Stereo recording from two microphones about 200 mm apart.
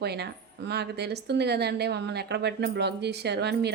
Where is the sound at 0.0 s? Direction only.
55° right (ahead or behind).